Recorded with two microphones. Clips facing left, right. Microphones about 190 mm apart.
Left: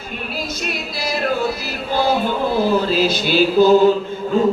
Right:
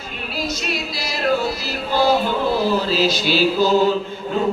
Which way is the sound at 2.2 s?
50° left (ahead or behind).